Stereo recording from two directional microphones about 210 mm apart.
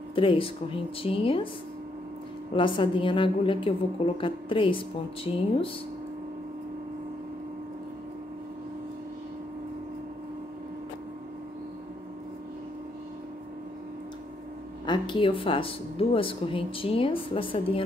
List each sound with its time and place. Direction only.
0.1 s a woman's voice: 25° left (ahead or behind)
2.5 s a woman's voice: 25° left (ahead or behind)
14.9 s a woman's voice: 25° left (ahead or behind)